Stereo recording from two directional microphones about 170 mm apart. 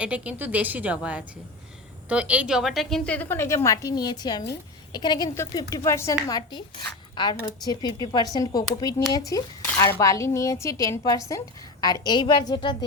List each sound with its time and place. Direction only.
0.0 s a woman's voice: 10° right (ahead or behind); by 12.7 s 25° left (ahead or behind)